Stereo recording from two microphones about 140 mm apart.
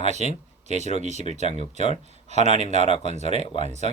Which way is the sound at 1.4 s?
50° left (ahead or behind).